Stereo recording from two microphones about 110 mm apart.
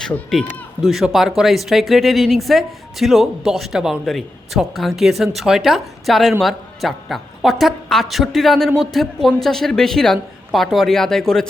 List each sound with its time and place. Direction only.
0.0 s a man's voice: 5° left (ahead or behind)